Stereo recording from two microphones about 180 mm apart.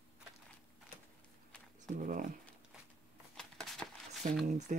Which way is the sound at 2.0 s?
50° right (ahead or behind).